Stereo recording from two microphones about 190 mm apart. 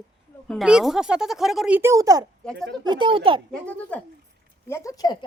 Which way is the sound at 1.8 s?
15° right (ahead or behind).